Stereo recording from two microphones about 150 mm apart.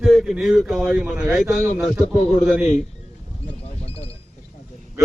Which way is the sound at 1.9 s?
45° left (ahead or behind).